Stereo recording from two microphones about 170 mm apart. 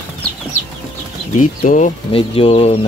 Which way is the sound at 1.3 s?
50° left (ahead or behind).